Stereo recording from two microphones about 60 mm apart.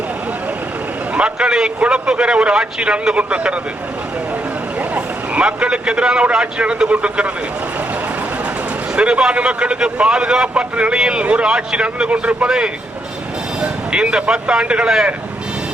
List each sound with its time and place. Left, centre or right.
1.1 s a man's voice: centre
4.8 s a man's voice: centre
9.0 s a man's voice: centre